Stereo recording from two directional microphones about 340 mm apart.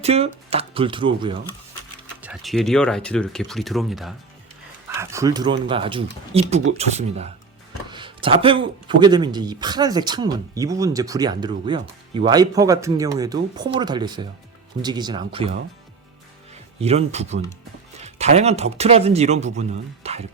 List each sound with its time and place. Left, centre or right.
0.0 s speech: centre
2.2 s speech: centre
16.8 s speech: centre